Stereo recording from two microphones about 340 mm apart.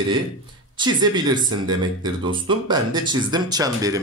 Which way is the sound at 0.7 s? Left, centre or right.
Centre.